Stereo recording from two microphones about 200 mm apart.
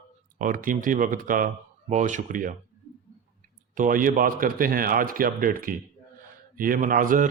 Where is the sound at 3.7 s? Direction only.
40° right (ahead or behind).